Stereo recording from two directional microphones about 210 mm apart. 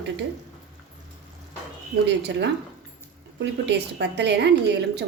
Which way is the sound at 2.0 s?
55° right (ahead or behind).